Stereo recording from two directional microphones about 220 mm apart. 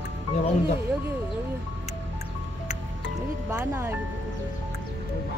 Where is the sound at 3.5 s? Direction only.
10° right (ahead or behind).